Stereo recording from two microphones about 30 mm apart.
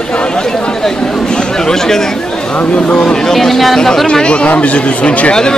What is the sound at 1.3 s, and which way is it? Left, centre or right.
Chatter, left.